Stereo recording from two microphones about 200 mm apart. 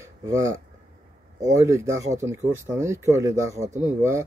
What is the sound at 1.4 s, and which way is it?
Speech, 15° right (ahead or behind).